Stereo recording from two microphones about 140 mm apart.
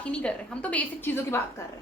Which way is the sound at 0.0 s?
10° left (ahead or behind).